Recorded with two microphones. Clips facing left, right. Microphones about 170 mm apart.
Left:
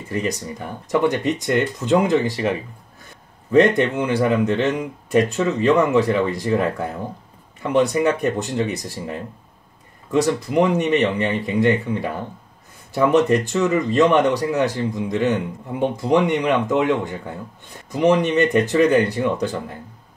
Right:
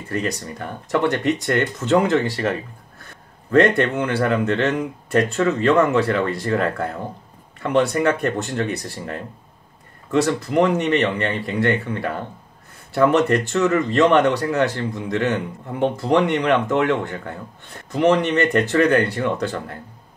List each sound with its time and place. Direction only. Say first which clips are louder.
0.2 s speech: left 1 dB; 15° left (ahead or behind)
8.7 s speech: even; 60° right (ahead or behind)
10.1 s speech: even; 15° left (ahead or behind)